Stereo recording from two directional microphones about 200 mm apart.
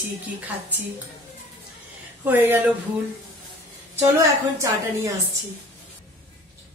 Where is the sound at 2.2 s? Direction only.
10° right (ahead or behind).